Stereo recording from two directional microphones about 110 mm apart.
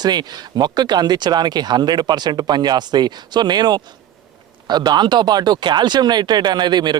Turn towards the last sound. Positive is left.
turn(degrees=-40)  # may be behind; listen again after turning